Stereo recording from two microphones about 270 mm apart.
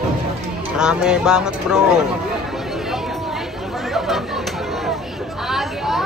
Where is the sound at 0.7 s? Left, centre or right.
Centre.